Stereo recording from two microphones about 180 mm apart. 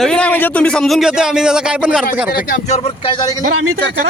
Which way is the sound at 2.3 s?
45° left (ahead or behind).